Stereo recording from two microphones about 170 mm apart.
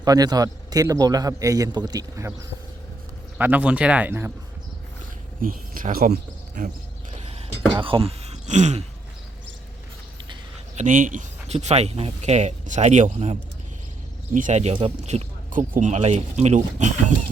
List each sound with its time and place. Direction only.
0.0 s a man's voice: 20° right (ahead or behind)
3.3 s speech: 10° right (ahead or behind)
5.4 s speech: 55° right (ahead or behind)
7.2 s speech: 35° right (ahead or behind)
10.8 s speech: 50° right (ahead or behind)